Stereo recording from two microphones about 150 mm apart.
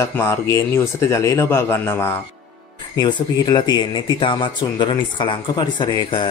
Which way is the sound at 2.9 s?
30° left (ahead or behind).